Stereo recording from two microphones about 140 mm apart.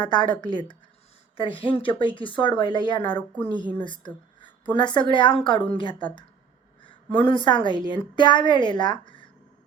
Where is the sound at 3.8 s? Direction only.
35° left (ahead or behind).